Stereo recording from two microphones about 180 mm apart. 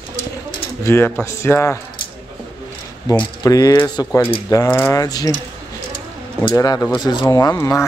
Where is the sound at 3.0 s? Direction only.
20° left (ahead or behind).